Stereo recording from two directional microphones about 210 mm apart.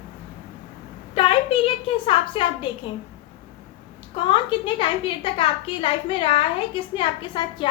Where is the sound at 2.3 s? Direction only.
25° left (ahead or behind).